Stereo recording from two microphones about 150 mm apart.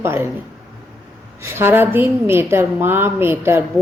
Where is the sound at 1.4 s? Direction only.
15° right (ahead or behind).